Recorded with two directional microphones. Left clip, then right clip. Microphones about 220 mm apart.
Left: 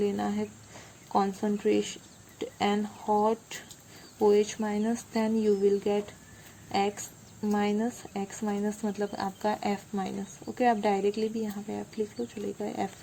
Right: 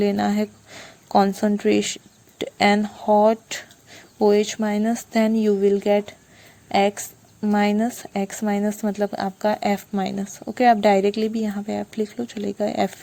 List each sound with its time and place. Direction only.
0.0 s speech: 45° right (ahead or behind)